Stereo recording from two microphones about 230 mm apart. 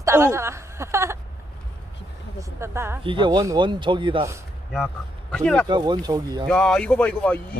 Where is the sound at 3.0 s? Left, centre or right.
Right.